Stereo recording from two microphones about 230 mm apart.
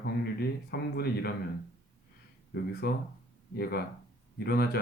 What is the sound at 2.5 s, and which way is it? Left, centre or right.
Speech, left.